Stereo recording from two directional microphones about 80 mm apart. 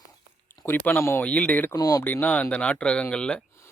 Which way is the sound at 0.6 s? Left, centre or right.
Left.